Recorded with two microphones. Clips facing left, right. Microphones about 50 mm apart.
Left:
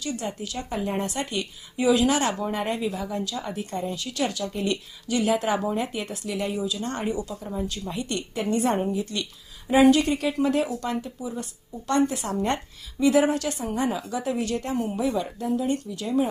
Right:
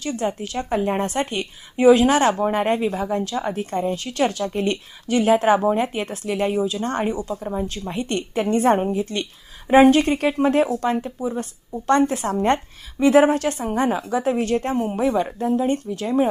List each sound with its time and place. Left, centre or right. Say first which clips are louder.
0.0 s speech: right 6 dB; right